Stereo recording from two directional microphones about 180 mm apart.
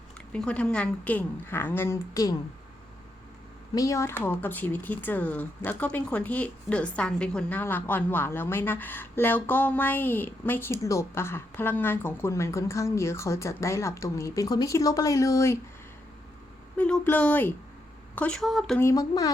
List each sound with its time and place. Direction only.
0.3 s speech: 5° left (ahead or behind)
3.8 s speech: 15° left (ahead or behind)
16.7 s a woman's voice: 10° left (ahead or behind)
18.8 s speech: 20° left (ahead or behind)